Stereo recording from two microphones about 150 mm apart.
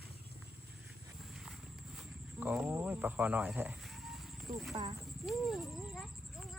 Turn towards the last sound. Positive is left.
turn(degrees=0)  # may be behind; listen again after turning